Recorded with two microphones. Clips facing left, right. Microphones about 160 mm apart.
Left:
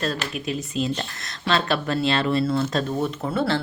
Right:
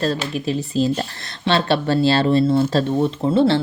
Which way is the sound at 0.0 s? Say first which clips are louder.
Right 5 dB; 35° right (ahead or behind).